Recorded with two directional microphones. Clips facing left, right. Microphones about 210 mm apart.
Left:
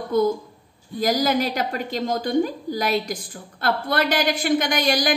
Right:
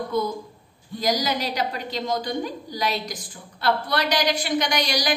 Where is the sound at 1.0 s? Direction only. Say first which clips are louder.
Left 4 dB; 50° left (ahead or behind).